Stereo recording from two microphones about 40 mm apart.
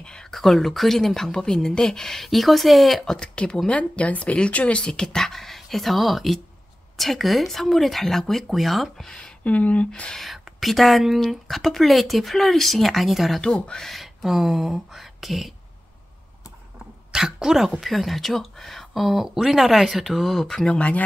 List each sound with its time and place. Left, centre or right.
0.0 s whispering: centre
0.3 s a woman's voice: centre
3.2 s speech: left
5.0 s speech: centre
9.0 s speech: left
9.4 s speech: left
10.1 s speech: centre
13.4 s speech: left
13.8 s speech: centre
17.1 s speech: centre
17.8 s speech: centre
20.7 s speech: left